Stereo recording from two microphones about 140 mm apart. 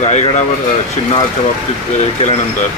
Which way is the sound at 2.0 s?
55° left (ahead or behind).